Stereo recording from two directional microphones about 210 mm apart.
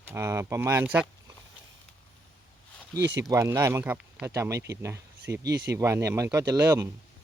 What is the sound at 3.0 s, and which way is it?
Speech, 55° right (ahead or behind).